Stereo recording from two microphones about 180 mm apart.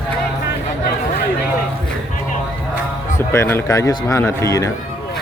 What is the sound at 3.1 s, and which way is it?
Speech, 15° left (ahead or behind).